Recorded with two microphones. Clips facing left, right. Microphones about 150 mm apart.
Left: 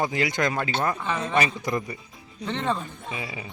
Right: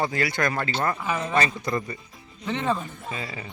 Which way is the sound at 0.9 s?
10° right (ahead or behind).